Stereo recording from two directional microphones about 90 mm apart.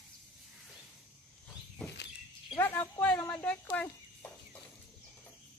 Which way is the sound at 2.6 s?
20° left (ahead or behind).